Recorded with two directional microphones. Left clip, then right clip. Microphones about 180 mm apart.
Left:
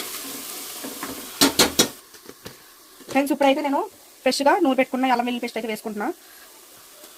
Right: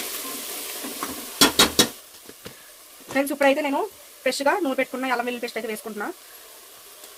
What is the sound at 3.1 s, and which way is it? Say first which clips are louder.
Speech: left 1 dB; 20° left (ahead or behind).